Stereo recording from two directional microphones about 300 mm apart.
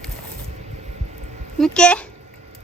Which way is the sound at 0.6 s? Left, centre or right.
Right.